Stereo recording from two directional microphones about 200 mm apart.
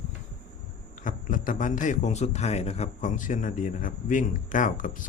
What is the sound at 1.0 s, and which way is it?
A man's voice, 40° left (ahead or behind).